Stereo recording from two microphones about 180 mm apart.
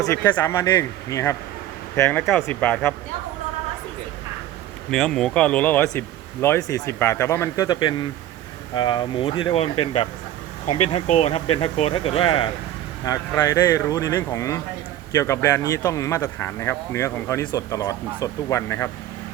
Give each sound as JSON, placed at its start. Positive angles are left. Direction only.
{"t": 0.1, "sound": "speech", "side_deg": 10}
{"t": 4.9, "sound": "speech", "side_deg": 5}
{"t": 13.1, "sound": "speech", "side_deg": 15}